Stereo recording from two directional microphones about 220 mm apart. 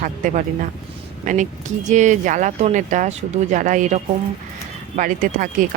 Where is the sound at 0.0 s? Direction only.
35° right (ahead or behind).